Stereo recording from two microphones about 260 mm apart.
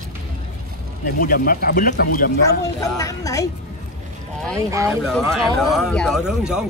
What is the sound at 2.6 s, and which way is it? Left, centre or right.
Speech, centre.